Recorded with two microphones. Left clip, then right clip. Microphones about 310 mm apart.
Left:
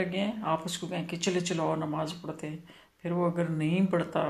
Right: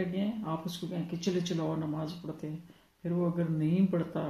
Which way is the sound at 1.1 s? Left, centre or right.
Left.